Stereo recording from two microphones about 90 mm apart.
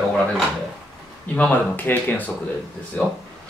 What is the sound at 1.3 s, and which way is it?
Speech, 20° left (ahead or behind).